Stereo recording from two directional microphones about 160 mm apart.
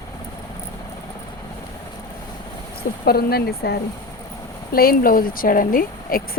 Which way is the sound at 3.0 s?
75° left (ahead or behind).